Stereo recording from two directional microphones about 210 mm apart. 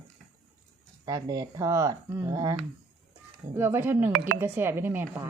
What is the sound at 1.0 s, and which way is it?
Speech, 15° right (ahead or behind).